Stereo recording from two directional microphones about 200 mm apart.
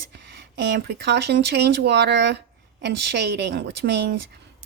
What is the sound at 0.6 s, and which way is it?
A woman's voice, 55° right (ahead or behind).